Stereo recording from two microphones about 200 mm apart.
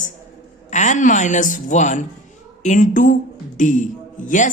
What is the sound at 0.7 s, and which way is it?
Speech, 40° left (ahead or behind).